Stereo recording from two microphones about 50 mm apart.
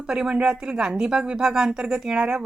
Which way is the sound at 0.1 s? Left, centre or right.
Centre.